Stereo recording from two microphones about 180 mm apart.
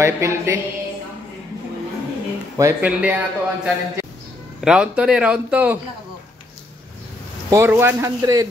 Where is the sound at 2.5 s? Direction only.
10° right (ahead or behind).